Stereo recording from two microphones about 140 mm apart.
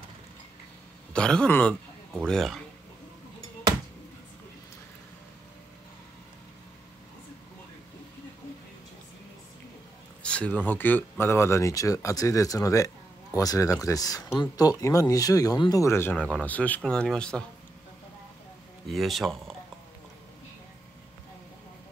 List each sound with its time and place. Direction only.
1.1 s speech: 5° left (ahead or behind)
10.2 s speech: 10° left (ahead or behind)
18.9 s speech: centre (ahead or behind)